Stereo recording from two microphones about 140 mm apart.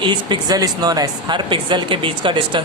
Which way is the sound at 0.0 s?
35° right (ahead or behind).